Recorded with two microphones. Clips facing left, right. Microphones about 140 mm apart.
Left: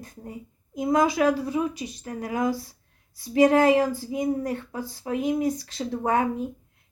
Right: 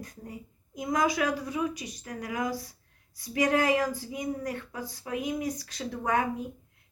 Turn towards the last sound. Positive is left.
turn(degrees=25)  # may be behind; listen again after turning